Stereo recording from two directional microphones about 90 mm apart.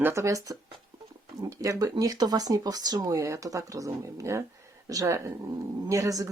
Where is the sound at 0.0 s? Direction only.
30° right (ahead or behind).